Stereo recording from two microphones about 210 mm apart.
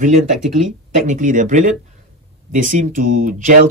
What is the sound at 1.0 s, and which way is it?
Speech, 40° right (ahead or behind).